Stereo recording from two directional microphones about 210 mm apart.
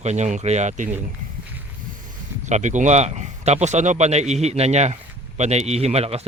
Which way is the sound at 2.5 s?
35° right (ahead or behind).